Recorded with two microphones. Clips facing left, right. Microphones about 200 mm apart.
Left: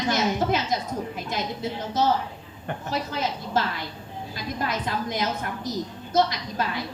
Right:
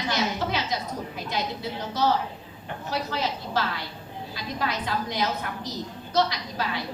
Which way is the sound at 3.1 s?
50° left (ahead or behind).